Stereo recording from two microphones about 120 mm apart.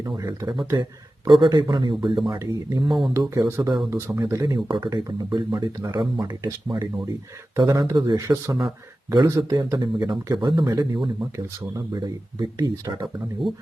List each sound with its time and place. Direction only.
0.0 s speech: 25° right (ahead or behind)
0.4 s speech: 35° right (ahead or behind)
2.4 s speech: 30° right (ahead or behind)
4.4 s speech: 40° right (ahead or behind)
13.5 s speech: centre (ahead or behind)